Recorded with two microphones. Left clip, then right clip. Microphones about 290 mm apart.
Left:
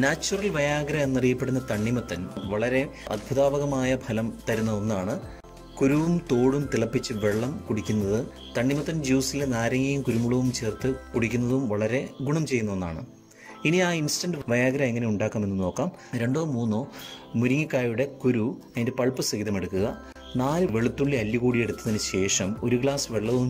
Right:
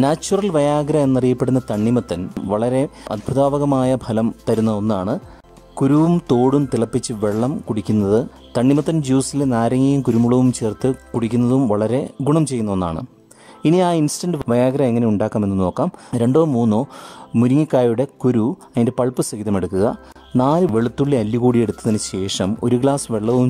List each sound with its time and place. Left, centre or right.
0.0 s speech: centre
15.3 s speech: right